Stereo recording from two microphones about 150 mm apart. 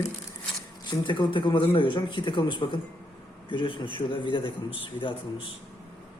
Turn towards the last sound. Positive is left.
turn(degrees=35)  # may be behind; listen again after turning